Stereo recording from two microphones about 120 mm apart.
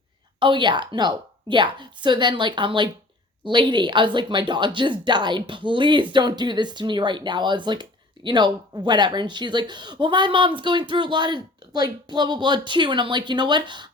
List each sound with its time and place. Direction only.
0.3 s speech: 40° right (ahead or behind)